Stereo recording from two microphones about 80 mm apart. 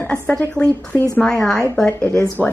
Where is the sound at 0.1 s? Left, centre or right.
Centre.